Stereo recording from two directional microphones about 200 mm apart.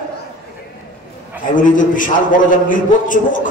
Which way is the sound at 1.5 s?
40° left (ahead or behind).